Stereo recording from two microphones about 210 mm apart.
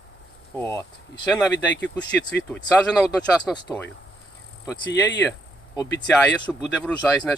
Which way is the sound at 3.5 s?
20° left (ahead or behind).